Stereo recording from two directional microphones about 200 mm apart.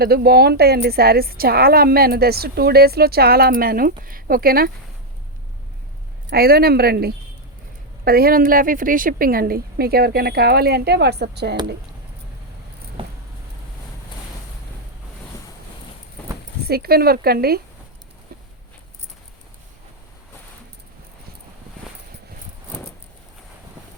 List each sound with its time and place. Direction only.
0.0 s a woman's voice: 50° right (ahead or behind)
6.3 s a woman's voice: 50° right (ahead or behind)
13.0 s a sound: 25° right (ahead or behind)
16.6 s a woman's voice: 50° right (ahead or behind)